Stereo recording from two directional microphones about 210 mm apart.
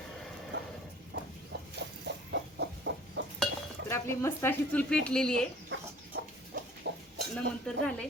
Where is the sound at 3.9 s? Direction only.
10° left (ahead or behind).